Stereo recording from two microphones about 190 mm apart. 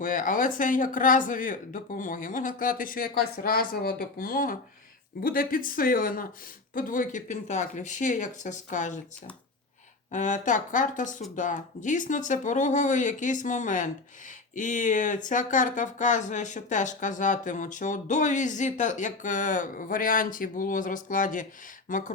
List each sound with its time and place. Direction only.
0.0 s speech: 45° left (ahead or behind)
10.1 s speech: 40° left (ahead or behind)